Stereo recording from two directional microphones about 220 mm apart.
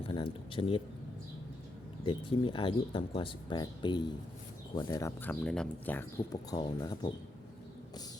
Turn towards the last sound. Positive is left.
turn(degrees=15)  # may be behind; listen again after turning